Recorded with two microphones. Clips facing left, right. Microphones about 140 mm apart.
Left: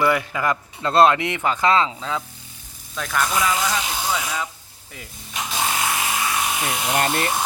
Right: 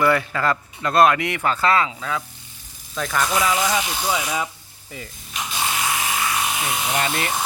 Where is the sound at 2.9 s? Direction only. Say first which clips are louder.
Right 1 dB; centre (ahead or behind).